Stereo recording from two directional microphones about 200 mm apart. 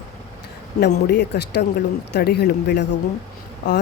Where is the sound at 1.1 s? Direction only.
55° left (ahead or behind).